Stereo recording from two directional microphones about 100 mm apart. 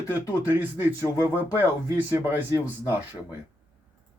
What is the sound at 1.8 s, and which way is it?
Speech, 30° left (ahead or behind).